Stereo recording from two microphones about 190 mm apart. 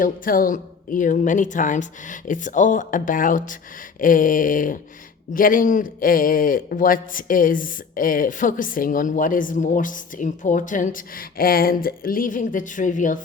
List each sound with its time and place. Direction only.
0.0 s a man's voice: 45° left (ahead or behind)